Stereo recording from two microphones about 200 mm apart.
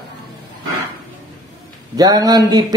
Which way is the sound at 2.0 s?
20° right (ahead or behind).